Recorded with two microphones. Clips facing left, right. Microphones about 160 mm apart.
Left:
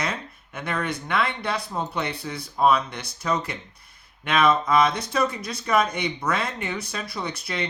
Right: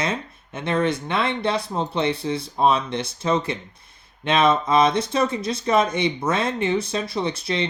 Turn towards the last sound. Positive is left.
turn(degrees=-25)  # may be behind; listen again after turning